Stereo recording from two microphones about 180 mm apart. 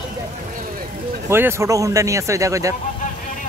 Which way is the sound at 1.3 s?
15° right (ahead or behind).